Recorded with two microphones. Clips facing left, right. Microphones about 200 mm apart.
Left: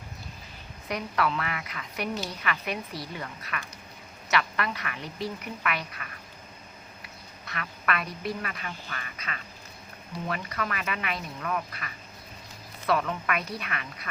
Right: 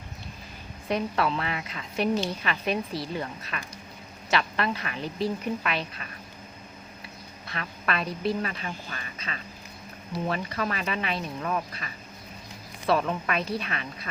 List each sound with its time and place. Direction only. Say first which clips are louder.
0.9 s a woman's voice: right 3 dB; 25° right (ahead or behind)
7.4 s a woman's voice: even; 30° right (ahead or behind)